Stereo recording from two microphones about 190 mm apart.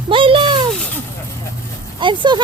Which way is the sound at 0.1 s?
25° right (ahead or behind).